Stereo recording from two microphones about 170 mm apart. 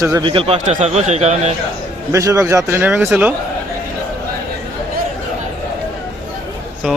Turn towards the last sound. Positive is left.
turn(degrees=-5)  # may be behind; listen again after turning